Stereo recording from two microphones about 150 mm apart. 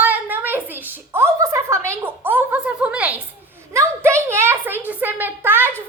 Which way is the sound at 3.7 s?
20° right (ahead or behind).